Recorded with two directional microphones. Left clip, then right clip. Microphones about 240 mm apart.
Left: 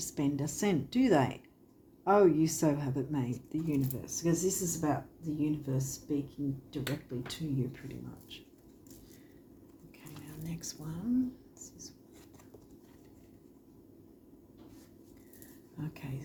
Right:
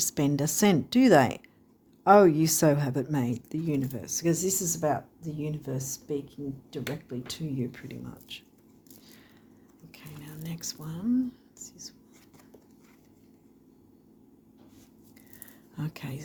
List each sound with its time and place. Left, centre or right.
0.0 s a woman's voice: right
8.3 s speech: right
10.4 s speech: right
11.6 s whispering: right
15.8 s speech: right